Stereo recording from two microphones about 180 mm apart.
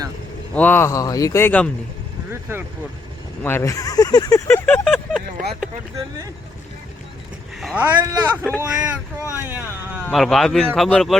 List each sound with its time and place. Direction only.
0.5 s speech: 10° left (ahead or behind)
2.3 s speech: 15° right (ahead or behind)
3.4 s speech: 15° left (ahead or behind)
7.8 s speech: 15° right (ahead or behind)
10.1 s speech: centre (ahead or behind)